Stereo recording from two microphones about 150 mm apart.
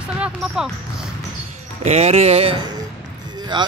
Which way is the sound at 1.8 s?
45° right (ahead or behind).